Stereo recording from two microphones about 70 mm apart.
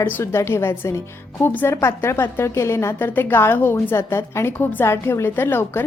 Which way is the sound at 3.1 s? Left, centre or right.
Left.